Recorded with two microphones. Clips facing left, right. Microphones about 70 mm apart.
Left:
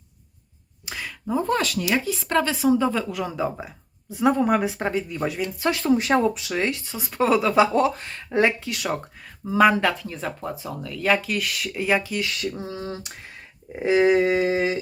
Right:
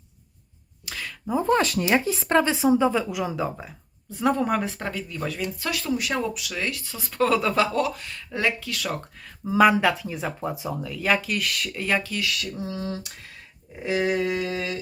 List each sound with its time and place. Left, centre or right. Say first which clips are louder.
1.5 s speech: right 5 dB; right
2.2 s a woman's voice: left 1 dB; right; by 4.8 s centre
4.8 s speech: left 5 dB; left
9.5 s speech: even; centre
12.2 s speech: left 1 dB; left